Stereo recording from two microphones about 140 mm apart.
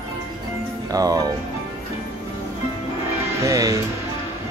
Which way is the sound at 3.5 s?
25° right (ahead or behind).